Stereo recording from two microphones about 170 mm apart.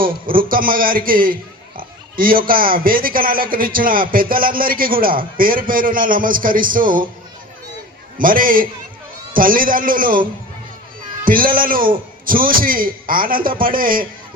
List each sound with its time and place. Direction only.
0.3 s a man's voice: 55° right (ahead or behind)
8.2 s a man's voice: 55° right (ahead or behind)
11.3 s a man's voice: 55° right (ahead or behind)